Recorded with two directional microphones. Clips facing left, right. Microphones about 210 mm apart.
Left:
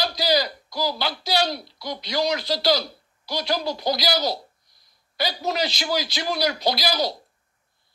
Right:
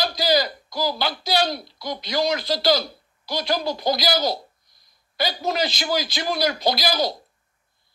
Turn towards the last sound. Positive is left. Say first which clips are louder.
# right 1 dB
turn(degrees=-50)  # may be behind; listen again after turning